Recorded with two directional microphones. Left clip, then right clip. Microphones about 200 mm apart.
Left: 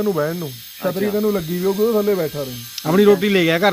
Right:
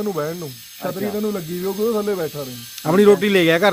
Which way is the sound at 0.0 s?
45° left (ahead or behind).